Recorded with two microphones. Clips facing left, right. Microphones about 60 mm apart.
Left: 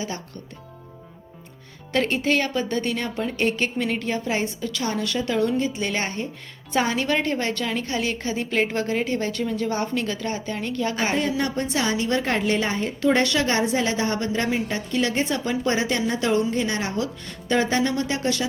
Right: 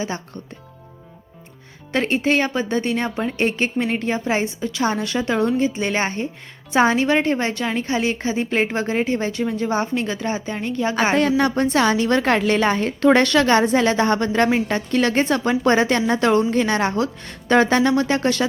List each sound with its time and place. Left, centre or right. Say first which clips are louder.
1.9 s a woman's voice: right 3 dB; right
11.1 s a woman's voice: right 6 dB; right
13.7 s a woman's voice: right 6 dB; right